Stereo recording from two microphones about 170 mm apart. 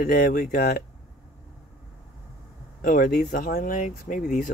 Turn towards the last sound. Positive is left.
turn(degrees=50)  # may be behind; listen again after turning